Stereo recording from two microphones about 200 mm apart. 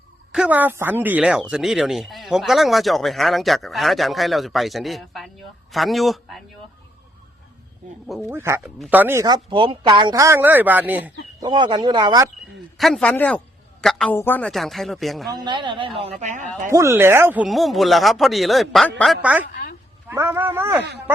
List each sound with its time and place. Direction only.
0.3 s speech: 5° right (ahead or behind)
8.3 s a woman's voice: 10° right (ahead or behind)
11.4 s speech: 20° right (ahead or behind)
12.7 s speech: centre (ahead or behind)
15.3 s speech: 20° right (ahead or behind); by 16.5 s 35° right (ahead or behind)
16.6 s a woman's voice: 15° right (ahead or behind)